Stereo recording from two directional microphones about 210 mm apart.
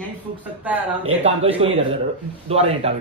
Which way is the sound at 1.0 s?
30° right (ahead or behind).